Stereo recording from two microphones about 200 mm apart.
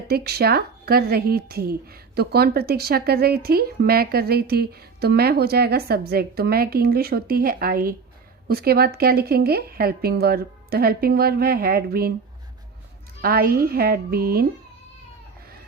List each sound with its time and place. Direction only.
0.1 s speech: 50° right (ahead or behind)
13.2 s speech: 50° right (ahead or behind)